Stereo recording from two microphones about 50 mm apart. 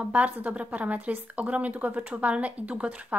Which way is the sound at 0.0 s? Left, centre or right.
Right.